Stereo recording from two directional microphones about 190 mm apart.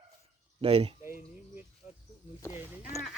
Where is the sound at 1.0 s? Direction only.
10° right (ahead or behind).